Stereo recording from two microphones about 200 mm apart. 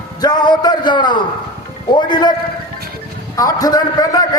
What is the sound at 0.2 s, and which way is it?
A man's voice, 20° left (ahead or behind).